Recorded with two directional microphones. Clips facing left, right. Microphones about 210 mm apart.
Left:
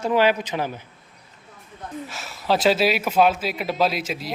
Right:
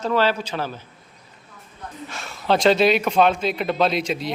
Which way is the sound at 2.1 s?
5° left (ahead or behind).